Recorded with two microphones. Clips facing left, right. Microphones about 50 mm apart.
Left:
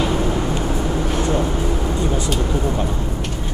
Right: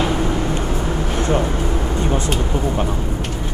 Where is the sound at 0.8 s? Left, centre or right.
Centre.